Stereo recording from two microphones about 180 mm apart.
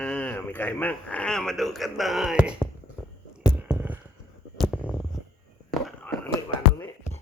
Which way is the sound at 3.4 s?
5° right (ahead or behind).